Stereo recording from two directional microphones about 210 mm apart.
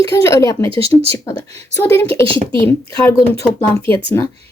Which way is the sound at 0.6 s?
25° right (ahead or behind).